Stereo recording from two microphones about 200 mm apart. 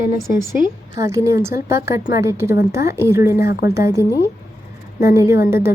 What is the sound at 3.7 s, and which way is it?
A woman's voice, 15° right (ahead or behind).